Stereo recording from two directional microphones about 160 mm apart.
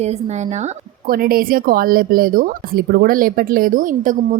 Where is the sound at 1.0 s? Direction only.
65° right (ahead or behind).